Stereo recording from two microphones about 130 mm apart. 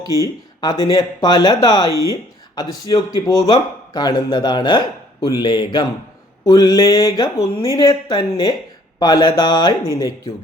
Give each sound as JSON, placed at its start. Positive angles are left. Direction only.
{"t": 0.0, "sound": "speech", "side_deg": 25}